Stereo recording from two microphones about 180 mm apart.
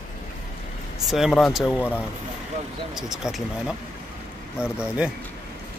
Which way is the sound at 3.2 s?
5° right (ahead or behind).